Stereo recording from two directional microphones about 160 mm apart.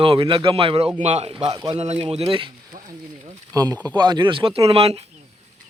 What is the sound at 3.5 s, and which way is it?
A man's voice, 25° right (ahead or behind).